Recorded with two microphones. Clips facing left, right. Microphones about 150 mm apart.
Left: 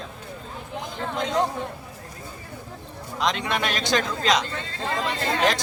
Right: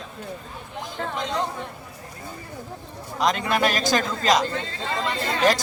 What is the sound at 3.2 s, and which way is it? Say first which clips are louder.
A man's voice: right 3 dB; centre (ahead or behind).